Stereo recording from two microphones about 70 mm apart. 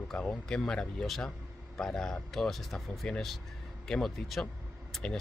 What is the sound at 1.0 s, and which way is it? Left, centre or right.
Speech, centre.